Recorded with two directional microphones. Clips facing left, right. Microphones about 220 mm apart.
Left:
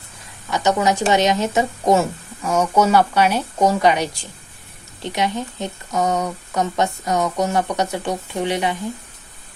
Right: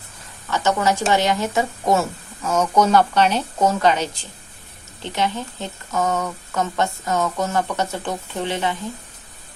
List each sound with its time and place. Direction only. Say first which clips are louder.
0.5 s speech: left 2 dB; 15° left (ahead or behind)